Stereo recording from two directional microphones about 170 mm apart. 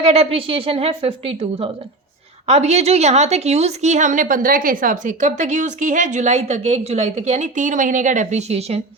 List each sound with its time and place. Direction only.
0.0 s a woman's voice: 35° right (ahead or behind)